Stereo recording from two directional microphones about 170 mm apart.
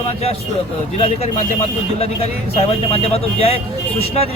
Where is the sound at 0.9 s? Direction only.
35° left (ahead or behind).